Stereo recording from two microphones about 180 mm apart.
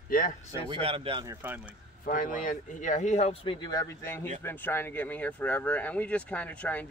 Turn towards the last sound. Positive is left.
turn(degrees=10)  # may be behind; listen again after turning